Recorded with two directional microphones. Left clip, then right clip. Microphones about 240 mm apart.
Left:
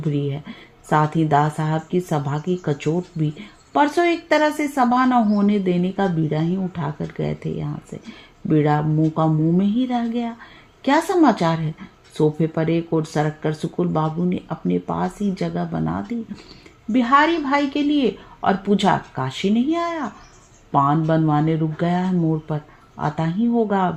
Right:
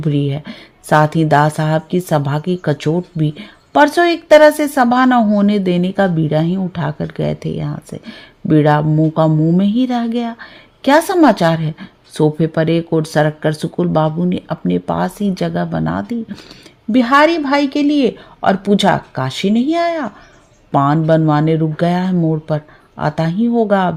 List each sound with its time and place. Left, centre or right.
0.0 s speech: right